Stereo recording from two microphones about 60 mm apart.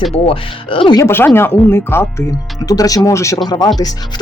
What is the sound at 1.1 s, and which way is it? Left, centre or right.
Speech, left.